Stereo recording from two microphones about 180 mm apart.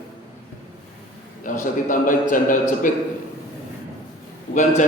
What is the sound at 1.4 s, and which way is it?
A man's voice, 45° left (ahead or behind).